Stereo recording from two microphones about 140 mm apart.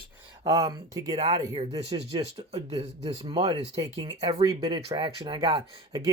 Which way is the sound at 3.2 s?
40° right (ahead or behind).